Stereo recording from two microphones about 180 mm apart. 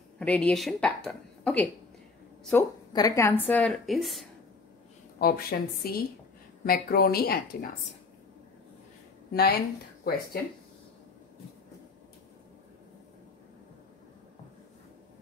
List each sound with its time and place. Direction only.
0.2 s a woman's voice: 5° left (ahead or behind)
2.9 s a woman's voice: 20° left (ahead or behind); by 4.3 s centre (ahead or behind)
5.2 s a woman's voice: 60° left (ahead or behind)
9.3 s a woman's voice: 60° left (ahead or behind)